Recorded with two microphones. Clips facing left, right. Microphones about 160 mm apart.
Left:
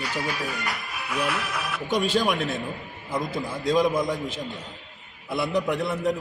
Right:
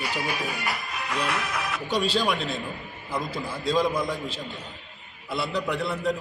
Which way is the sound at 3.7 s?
20° left (ahead or behind).